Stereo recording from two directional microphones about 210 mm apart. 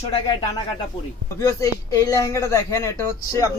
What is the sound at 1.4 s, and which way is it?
Speech, 15° left (ahead or behind).